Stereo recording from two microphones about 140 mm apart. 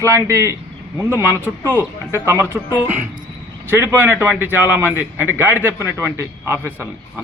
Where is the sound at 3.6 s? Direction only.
15° right (ahead or behind).